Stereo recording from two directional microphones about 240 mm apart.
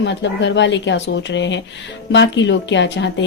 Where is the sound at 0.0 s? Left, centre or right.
Left.